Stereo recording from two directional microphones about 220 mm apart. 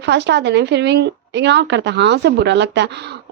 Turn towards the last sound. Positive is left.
turn(degrees=-50)  # may be behind; listen again after turning